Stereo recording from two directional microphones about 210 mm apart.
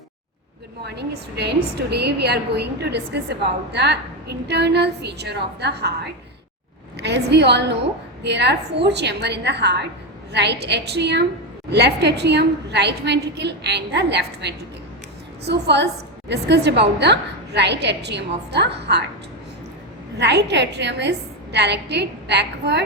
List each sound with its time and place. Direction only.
0.9 s a woman's voice: 50° right (ahead or behind)
20.1 s a woman's voice: 55° right (ahead or behind)